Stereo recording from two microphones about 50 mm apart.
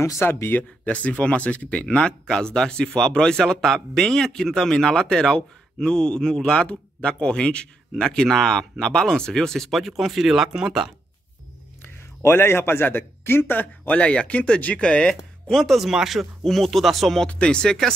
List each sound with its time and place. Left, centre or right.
0.2 s speech: left; by 10.5 s centre
12.2 s speech: left
13.9 s speech: left
15.5 s speech: centre
15.9 s speech: centre
17.3 s speech: left